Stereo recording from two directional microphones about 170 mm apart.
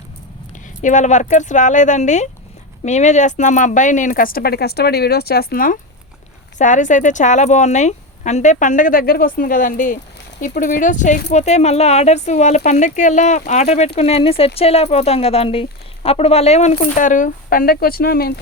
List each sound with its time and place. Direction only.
0.8 s speech: 45° left (ahead or behind)
6.6 s speech: 45° left (ahead or behind); by 18.3 s 60° left (ahead or behind)